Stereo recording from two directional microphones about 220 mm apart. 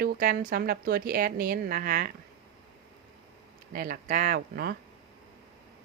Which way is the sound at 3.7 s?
40° right (ahead or behind).